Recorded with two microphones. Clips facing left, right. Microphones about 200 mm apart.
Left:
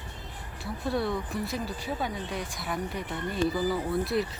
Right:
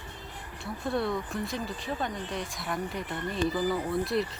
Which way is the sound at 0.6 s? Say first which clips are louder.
Left 1 dB; centre (ahead or behind).